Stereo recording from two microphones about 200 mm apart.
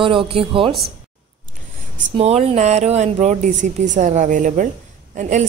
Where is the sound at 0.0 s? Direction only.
25° right (ahead or behind).